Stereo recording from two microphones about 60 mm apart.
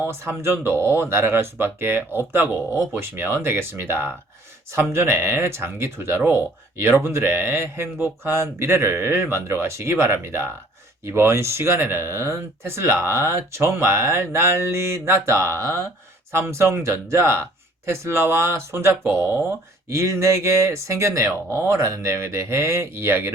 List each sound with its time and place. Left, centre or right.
0.0 s speech: right
19.9 s speech: right